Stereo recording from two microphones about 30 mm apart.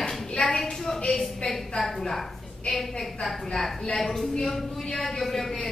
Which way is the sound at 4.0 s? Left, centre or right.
Centre.